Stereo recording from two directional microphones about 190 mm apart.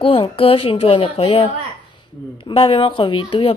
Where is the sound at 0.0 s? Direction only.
30° left (ahead or behind).